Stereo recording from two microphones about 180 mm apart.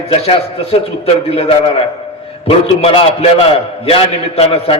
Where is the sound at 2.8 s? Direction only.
30° left (ahead or behind).